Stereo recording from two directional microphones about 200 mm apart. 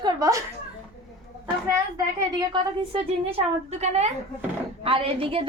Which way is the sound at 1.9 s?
20° right (ahead or behind).